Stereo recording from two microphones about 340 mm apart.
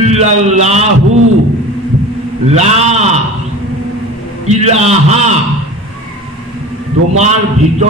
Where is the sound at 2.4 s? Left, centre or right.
Centre.